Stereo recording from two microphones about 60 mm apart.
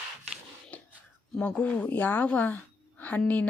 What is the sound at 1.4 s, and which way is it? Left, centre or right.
A woman's voice, left.